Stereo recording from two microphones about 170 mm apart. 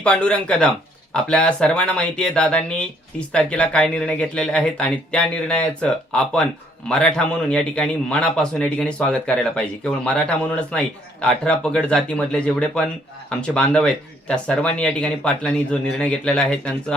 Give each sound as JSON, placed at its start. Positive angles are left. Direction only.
{"t": 0.0, "sound": "speech", "side_deg": 5}